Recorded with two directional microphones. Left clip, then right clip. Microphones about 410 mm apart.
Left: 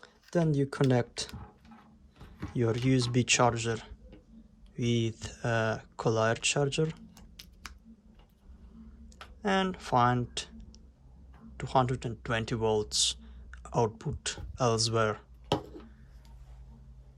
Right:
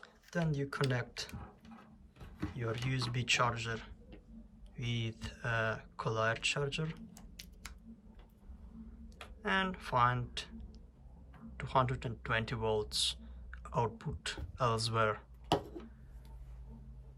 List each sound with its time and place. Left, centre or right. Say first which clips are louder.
0.0 s speech: left 8 dB; centre
2.6 s speech: left 11 dB; centre
9.0 s a sound: left 5 dB; centre
11.5 s speech: left 5 dB; centre